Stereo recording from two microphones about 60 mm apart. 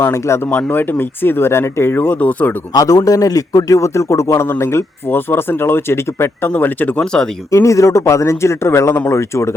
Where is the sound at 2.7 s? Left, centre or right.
Left.